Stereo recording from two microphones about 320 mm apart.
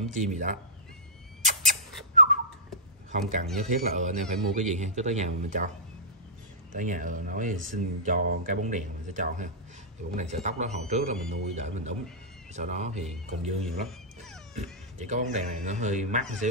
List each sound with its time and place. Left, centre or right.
0.0 s speech: right
1.4 s a sound: right
3.1 s speech: right
6.7 s speech: right
13.7 s cat: centre
14.5 s speech: right